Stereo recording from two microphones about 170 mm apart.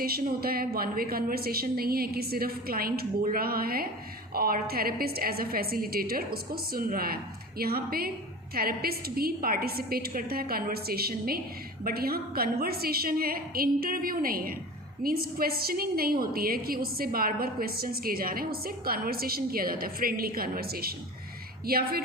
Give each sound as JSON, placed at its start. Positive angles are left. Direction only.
{"t": 0.0, "sound": "a woman's voice", "side_deg": -60}